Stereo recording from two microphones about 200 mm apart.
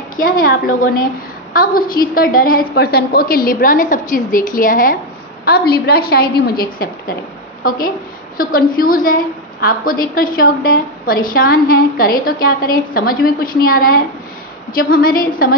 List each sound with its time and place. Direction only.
0.1 s a woman's voice: 45° left (ahead or behind)